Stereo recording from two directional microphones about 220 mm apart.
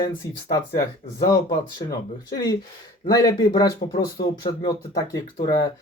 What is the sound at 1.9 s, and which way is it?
Speech, 15° left (ahead or behind).